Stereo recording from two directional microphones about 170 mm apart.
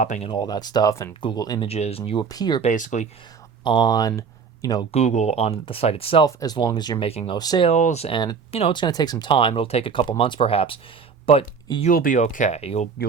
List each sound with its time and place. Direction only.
0.0 s speech: 45° left (ahead or behind)
0.3 s speech: 25° left (ahead or behind)
1.6 s speech: 35° left (ahead or behind)
2.2 s speech: 20° left (ahead or behind)
2.6 s speech: 45° left (ahead or behind)
3.6 s speech: 25° left (ahead or behind)
4.8 s speech: 40° left (ahead or behind)
6.2 s speech: 20° left (ahead or behind)
7.1 s speech: 35° left (ahead or behind)
7.3 s speech: 25° left (ahead or behind)
7.7 s speech: 40° left (ahead or behind)
11.9 s speech: 55° left (ahead or behind)